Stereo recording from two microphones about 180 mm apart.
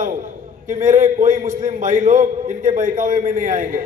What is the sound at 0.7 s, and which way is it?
A man's voice, 45° right (ahead or behind).